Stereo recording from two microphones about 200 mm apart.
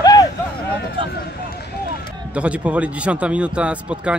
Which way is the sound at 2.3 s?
5° right (ahead or behind).